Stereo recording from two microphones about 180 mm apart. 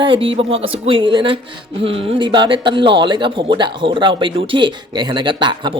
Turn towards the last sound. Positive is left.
turn(degrees=-25)  # may be behind; listen again after turning